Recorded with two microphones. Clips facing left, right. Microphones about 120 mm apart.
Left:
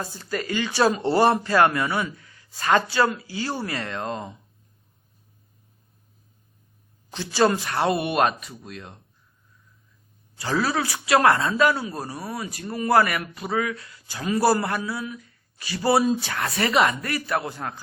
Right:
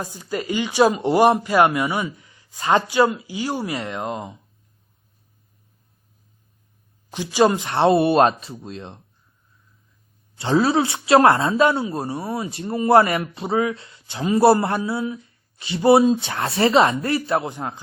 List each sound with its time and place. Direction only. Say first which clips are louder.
0.0 s speech: right 2 dB; 15° right (ahead or behind)
7.1 s speech: right 3 dB; 15° right (ahead or behind)
10.3 s speech: right 6 dB; 25° right (ahead or behind)